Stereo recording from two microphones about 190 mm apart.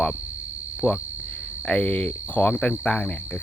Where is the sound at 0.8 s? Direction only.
5° left (ahead or behind).